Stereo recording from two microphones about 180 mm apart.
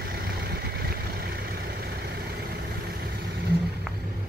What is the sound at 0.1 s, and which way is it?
Vehicle, 60° right (ahead or behind).